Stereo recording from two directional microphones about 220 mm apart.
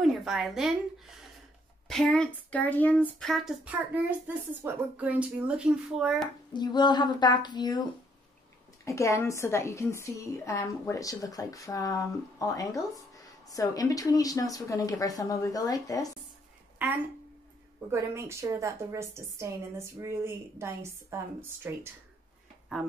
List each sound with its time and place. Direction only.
0.0 s a woman's voice: centre (ahead or behind)
6.5 s speech: 20° left (ahead or behind)
8.8 s a woman's voice: 15° left (ahead or behind)
17.8 s a woman's voice: 10° right (ahead or behind)